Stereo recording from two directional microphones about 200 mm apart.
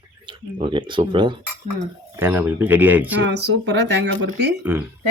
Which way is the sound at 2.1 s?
10° right (ahead or behind).